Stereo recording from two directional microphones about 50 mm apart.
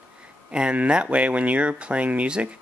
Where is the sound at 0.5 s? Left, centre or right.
Right.